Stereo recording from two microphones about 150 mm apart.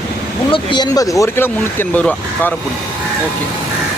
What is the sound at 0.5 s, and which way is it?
Speech, 30° left (ahead or behind).